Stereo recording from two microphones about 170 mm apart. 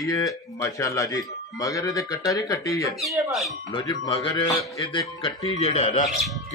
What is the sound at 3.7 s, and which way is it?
Speech, 30° left (ahead or behind).